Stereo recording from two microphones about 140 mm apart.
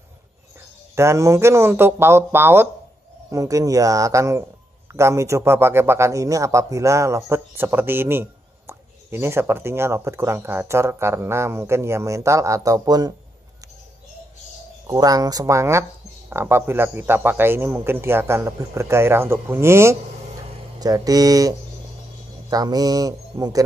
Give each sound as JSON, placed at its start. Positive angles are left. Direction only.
{"t": 0.9, "sound": "a man's voice", "side_deg": -20}
{"t": 14.9, "sound": "a man's voice", "side_deg": -25}